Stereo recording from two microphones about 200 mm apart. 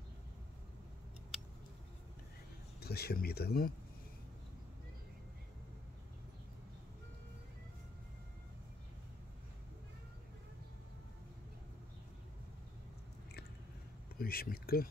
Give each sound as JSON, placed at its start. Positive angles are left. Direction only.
{"t": 2.8, "sound": "speech", "side_deg": 50}
{"t": 14.1, "sound": "speech", "side_deg": 50}